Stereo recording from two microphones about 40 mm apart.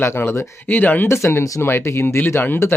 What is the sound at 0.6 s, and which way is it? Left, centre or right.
Speech, left.